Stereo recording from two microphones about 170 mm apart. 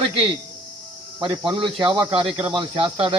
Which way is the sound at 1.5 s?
30° right (ahead or behind).